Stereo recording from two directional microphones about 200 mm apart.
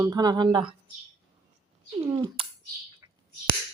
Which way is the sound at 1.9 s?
25° right (ahead or behind).